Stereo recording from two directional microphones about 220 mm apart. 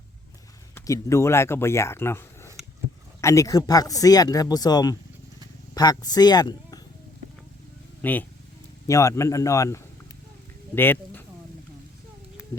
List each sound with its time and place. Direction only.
0.7 s speech: 15° left (ahead or behind)
8.0 s speech: 10° left (ahead or behind)